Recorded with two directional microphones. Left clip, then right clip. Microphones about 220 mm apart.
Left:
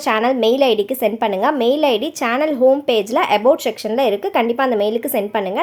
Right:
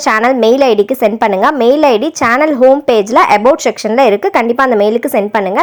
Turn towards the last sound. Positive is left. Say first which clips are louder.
# right 7 dB
turn(degrees=-20)  # may be behind; listen again after turning